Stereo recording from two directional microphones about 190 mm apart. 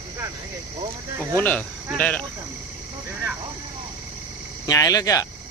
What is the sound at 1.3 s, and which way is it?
Speech, 10° left (ahead or behind).